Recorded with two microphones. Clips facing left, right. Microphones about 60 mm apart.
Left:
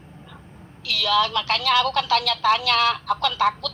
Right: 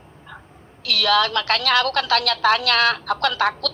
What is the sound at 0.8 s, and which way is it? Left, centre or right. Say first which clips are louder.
A woman's voice: right 2 dB; right.